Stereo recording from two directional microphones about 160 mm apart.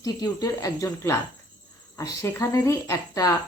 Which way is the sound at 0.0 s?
20° left (ahead or behind).